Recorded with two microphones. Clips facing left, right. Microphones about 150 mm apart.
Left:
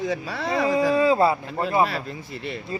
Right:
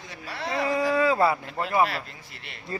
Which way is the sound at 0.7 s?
20° left (ahead or behind).